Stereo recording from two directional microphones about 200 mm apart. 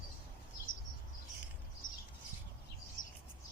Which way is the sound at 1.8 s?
40° left (ahead or behind).